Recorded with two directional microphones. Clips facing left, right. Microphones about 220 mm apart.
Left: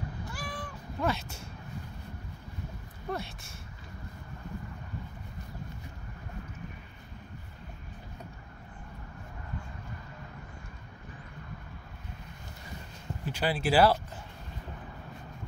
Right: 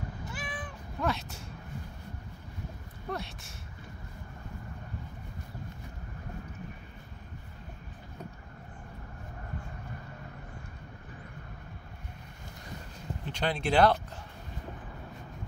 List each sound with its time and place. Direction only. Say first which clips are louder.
0.2 s cat: even; 20° right (ahead or behind)
0.5 s cat: left 1 dB; centre (ahead or behind)
3.1 s speech: left 1 dB; centre (ahead or behind)
13.2 s speech: left 2 dB; 5° left (ahead or behind)